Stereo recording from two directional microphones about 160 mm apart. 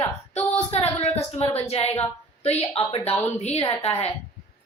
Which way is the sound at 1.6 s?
40° left (ahead or behind).